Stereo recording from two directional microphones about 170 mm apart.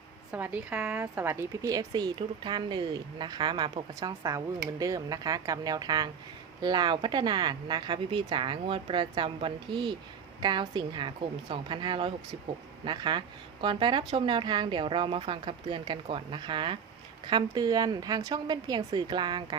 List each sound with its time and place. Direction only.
0.3 s a woman's voice: 10° right (ahead or behind); by 19.5 s 25° right (ahead or behind)